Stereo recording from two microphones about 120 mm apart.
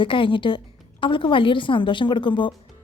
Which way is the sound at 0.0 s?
45° left (ahead or behind).